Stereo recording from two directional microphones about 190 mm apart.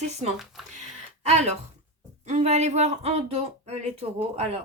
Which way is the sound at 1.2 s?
35° right (ahead or behind).